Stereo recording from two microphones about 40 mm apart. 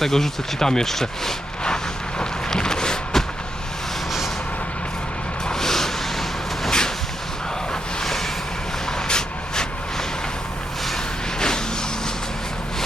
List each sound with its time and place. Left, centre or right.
0.0 s speech: centre
1.6 s vehicle: centre
5.5 s a sound: centre
8.0 s vehicle: centre
8.9 s vehicle: centre
11.3 s vehicle: centre